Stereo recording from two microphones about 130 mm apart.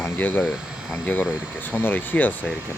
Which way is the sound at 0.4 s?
5° right (ahead or behind).